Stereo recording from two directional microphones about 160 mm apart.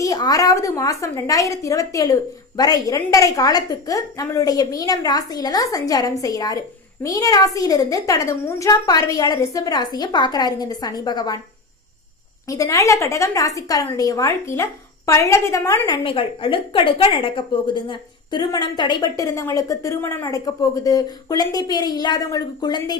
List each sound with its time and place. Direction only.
0.0 s a woman's voice: 20° left (ahead or behind)
12.5 s a woman's voice: 20° left (ahead or behind)
16.0 s a woman's voice: 35° left (ahead or behind)